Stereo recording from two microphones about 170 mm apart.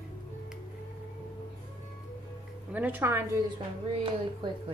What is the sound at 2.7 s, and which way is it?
Speech, 10° right (ahead or behind).